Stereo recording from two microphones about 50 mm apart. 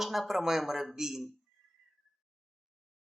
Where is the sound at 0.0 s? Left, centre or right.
Centre.